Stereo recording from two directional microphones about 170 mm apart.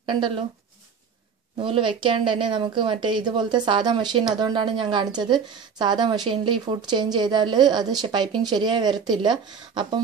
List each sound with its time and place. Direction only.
0.0 s speech: 30° right (ahead or behind)
1.6 s a woman's voice: 30° right (ahead or behind)